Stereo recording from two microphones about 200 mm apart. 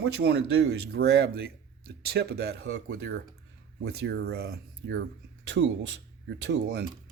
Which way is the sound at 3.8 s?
55° right (ahead or behind).